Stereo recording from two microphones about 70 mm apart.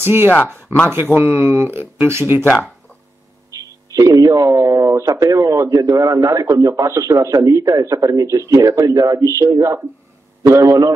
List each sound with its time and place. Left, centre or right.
0.0 s speech: right
3.5 s a sound: right
3.9 s a man's voice: right